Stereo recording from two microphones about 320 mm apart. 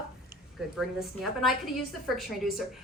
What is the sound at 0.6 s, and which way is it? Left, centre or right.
Speech, centre.